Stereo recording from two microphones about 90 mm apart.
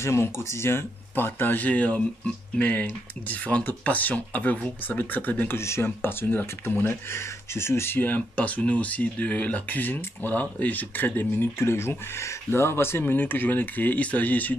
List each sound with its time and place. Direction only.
0.0 s speech: 30° left (ahead or behind)
5.6 s speech: 30° left (ahead or behind)
5.9 s speech: 20° left (ahead or behind)